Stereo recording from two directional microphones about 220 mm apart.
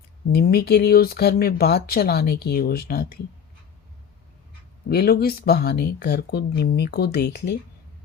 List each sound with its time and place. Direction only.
0.3 s speech: 45° left (ahead or behind)
4.9 s speech: 45° left (ahead or behind)